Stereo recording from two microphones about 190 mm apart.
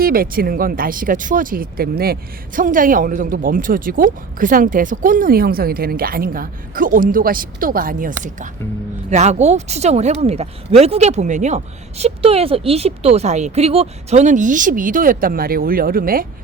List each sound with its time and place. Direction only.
0.0 s speech: 50° right (ahead or behind)